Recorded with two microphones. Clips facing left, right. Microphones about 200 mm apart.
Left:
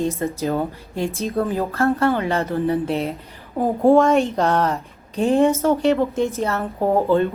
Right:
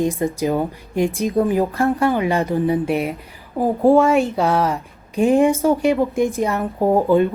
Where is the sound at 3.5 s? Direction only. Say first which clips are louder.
Right 1 dB; centre (ahead or behind).